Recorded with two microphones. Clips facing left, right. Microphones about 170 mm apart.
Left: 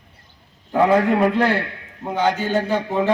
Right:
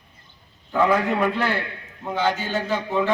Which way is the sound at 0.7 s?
30° left (ahead or behind).